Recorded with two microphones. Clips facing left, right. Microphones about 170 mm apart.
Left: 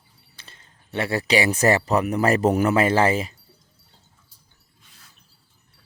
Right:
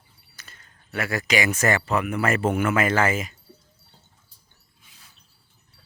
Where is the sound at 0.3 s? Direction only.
30° left (ahead or behind).